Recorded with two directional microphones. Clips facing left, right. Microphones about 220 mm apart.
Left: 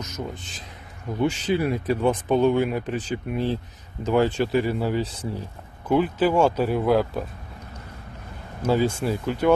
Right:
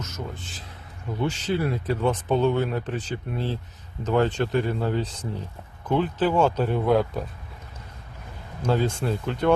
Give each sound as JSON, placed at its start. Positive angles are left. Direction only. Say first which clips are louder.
{"t": 0.0, "sound": "speech", "louder": "left 2 dB", "side_deg": 15}
{"t": 8.6, "sound": "speech", "louder": "left 2 dB", "side_deg": 5}